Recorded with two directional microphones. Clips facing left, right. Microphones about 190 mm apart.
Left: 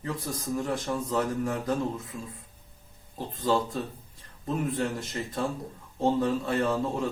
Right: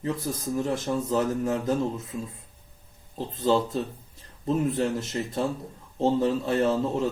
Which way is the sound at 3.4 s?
25° right (ahead or behind).